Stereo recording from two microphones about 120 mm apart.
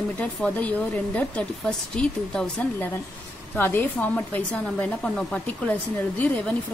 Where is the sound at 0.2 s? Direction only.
10° left (ahead or behind).